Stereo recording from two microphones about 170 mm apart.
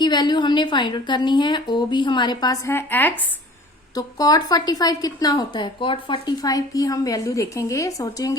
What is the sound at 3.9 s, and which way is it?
A woman's voice, 20° left (ahead or behind).